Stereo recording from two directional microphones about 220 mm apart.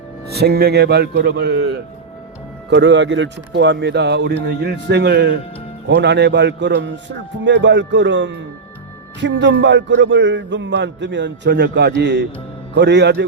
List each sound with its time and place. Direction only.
0.3 s a man's voice: 45° right (ahead or behind)
2.6 s a man's voice: 55° right (ahead or behind)